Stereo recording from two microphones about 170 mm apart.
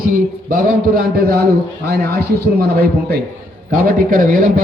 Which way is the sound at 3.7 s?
55° right (ahead or behind).